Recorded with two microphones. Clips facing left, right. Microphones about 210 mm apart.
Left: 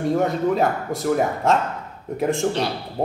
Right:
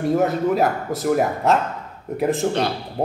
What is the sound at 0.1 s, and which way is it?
A man's voice, 5° right (ahead or behind).